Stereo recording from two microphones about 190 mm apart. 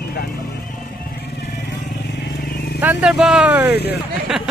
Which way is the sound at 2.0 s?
60° left (ahead or behind).